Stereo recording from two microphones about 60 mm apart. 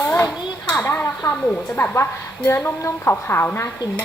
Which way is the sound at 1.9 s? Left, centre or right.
Left.